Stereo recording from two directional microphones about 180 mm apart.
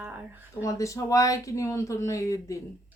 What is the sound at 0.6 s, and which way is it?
Speech, 15° left (ahead or behind).